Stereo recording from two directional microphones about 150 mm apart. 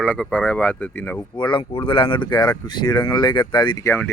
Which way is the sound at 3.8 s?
15° left (ahead or behind).